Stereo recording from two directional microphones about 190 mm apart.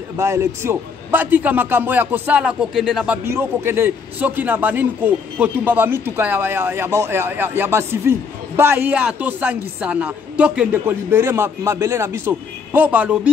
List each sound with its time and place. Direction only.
0.2 s a man's voice: 15° right (ahead or behind)
3.3 s a man's voice: 15° right (ahead or behind)